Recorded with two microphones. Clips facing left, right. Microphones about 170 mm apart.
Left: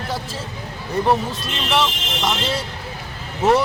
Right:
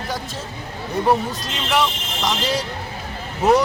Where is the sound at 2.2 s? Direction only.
Centre (ahead or behind).